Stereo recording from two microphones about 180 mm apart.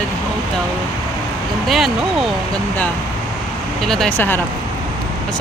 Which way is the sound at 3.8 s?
5° left (ahead or behind).